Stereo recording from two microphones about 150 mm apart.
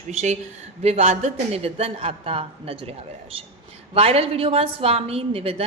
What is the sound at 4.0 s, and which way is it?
A woman's voice, 40° right (ahead or behind).